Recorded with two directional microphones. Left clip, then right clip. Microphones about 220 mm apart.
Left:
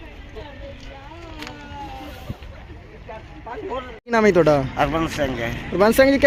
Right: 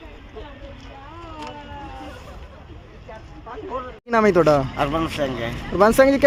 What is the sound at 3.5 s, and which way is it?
Speech, 40° left (ahead or behind).